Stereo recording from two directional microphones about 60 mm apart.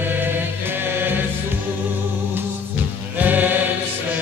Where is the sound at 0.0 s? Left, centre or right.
Right.